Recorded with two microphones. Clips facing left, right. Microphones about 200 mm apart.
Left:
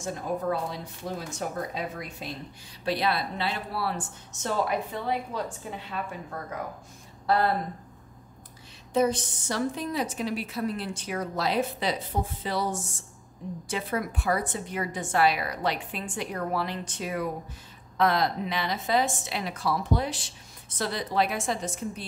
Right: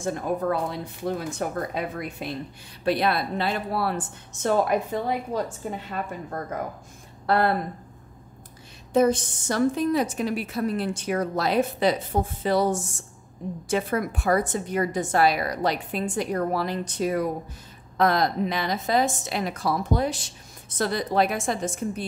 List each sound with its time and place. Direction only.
0.0 s a woman's voice: 55° right (ahead or behind)
7.2 s speech: 60° right (ahead or behind)
8.9 s a woman's voice: 50° right (ahead or behind)